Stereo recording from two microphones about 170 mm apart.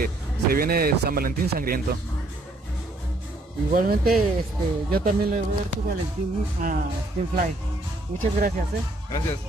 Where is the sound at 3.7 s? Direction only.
55° right (ahead or behind).